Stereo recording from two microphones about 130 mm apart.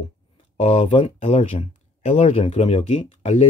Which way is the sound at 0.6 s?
50° left (ahead or behind).